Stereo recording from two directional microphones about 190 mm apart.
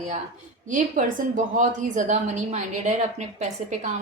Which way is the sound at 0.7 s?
40° right (ahead or behind).